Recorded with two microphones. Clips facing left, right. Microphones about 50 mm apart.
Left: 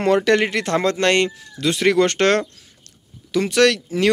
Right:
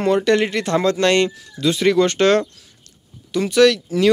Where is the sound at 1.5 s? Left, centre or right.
Left.